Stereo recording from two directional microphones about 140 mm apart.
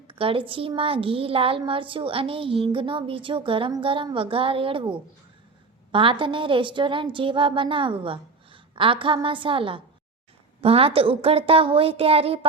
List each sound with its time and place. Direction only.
0.1 s a woman's voice: 40° right (ahead or behind)